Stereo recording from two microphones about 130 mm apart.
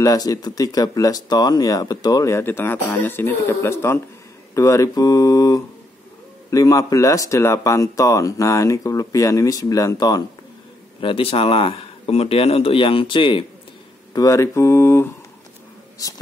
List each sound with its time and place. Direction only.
0.0 s speech: 30° left (ahead or behind)
11.0 s speech: 45° left (ahead or behind)
14.1 s speech: 25° left (ahead or behind)